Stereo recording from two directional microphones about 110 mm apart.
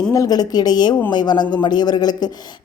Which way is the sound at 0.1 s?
35° left (ahead or behind).